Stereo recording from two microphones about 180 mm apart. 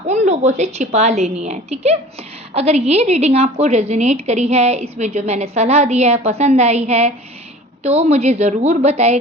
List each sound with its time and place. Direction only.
0.1 s a woman's voice: 40° right (ahead or behind)